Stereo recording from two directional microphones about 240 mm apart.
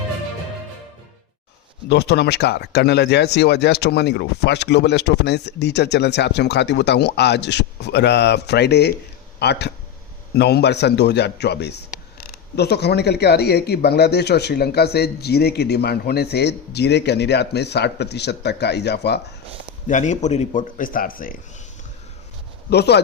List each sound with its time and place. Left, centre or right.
1.9 s speech: left
19.9 s speech: left
22.7 s speech: left